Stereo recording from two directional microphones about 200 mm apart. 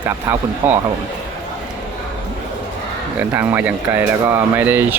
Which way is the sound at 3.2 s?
10° right (ahead or behind).